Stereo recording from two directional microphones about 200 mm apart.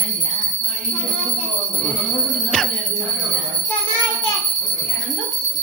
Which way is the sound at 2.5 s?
5° left (ahead or behind).